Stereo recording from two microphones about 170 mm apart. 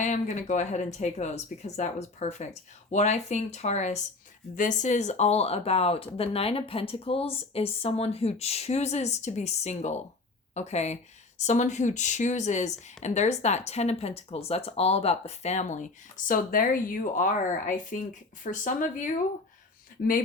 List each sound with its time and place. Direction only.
0.0 s speech: 45° left (ahead or behind)